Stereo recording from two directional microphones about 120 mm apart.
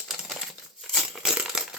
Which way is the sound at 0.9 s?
5° right (ahead or behind).